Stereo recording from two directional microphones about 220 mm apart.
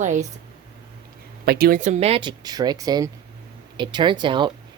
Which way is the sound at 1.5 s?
45° right (ahead or behind).